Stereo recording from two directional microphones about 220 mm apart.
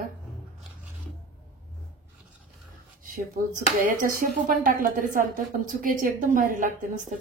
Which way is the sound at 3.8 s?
35° right (ahead or behind).